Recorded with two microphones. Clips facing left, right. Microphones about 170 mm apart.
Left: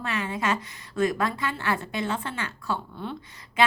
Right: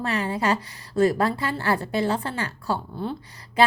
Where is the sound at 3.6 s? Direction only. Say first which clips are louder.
Right 3 dB; 35° right (ahead or behind).